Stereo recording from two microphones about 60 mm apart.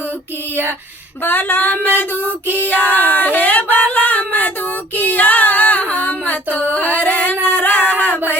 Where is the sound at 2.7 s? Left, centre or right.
Right.